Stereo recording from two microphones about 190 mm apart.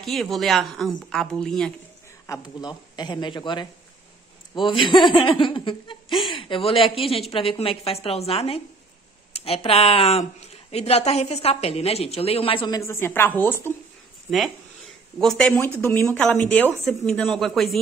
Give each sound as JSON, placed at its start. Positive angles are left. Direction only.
{"t": 0.0, "sound": "a woman's voice", "side_deg": 0}
{"t": 2.4, "sound": "a woman's voice", "side_deg": 20}
{"t": 15.1, "sound": "a woman's voice", "side_deg": 5}